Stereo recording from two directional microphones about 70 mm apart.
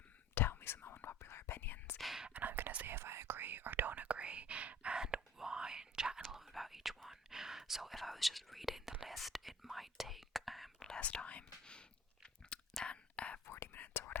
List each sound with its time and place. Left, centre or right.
0.3 s whispering: left
2.0 s whispering: centre
2.2 s whispering: right; by 13.5 s centre
13.5 s whispering: left